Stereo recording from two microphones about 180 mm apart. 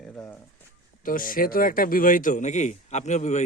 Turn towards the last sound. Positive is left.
turn(degrees=40)  # may be behind; listen again after turning